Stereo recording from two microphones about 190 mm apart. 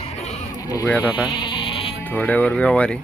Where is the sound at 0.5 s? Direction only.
20° left (ahead or behind).